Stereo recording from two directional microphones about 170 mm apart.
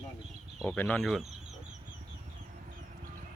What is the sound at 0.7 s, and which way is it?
Speech, 10° left (ahead or behind).